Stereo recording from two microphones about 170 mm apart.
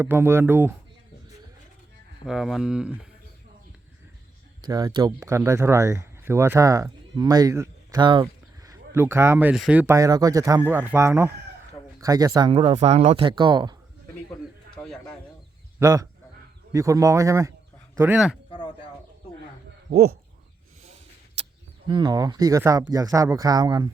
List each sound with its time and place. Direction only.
0.0 s speech: 15° right (ahead or behind)
2.2 s speech: centre (ahead or behind)
4.6 s speech: 25° right (ahead or behind)
12.5 s speech: 35° right (ahead or behind)
14.8 s bird: 15° left (ahead or behind)
15.8 s a man's voice: 20° right (ahead or behind)
21.8 s speech: 25° right (ahead or behind)